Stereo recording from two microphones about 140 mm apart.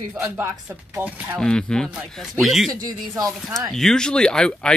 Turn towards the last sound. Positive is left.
turn(degrees=5)  # may be behind; listen again after turning